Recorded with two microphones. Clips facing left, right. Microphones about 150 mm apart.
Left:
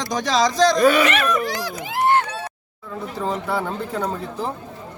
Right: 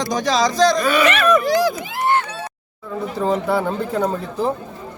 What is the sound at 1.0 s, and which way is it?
Speech, 90° right.